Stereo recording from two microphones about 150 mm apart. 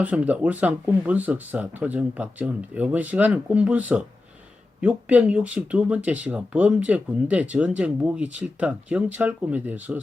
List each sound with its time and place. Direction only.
0.0 s speech: 10° right (ahead or behind)